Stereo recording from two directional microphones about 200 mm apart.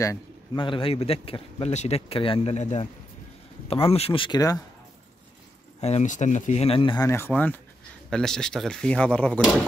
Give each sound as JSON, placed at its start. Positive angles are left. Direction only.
{"t": 0.0, "sound": "a man's voice", "side_deg": 20}
{"t": 5.8, "sound": "speech", "side_deg": 35}